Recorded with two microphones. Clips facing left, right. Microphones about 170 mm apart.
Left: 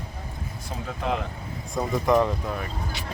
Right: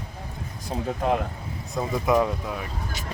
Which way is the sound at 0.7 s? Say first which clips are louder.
Right 6 dB; 30° right (ahead or behind).